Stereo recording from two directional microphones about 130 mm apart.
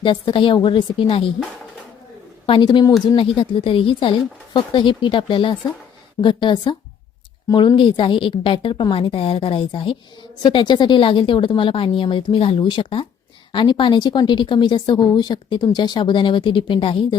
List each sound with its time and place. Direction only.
0.0 s a woman's voice: 40° left (ahead or behind)
2.5 s a woman's voice: 40° left (ahead or behind)
7.8 s a woman's voice: 40° left (ahead or behind)